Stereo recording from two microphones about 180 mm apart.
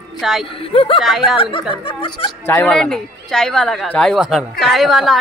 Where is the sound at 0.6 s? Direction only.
30° left (ahead or behind).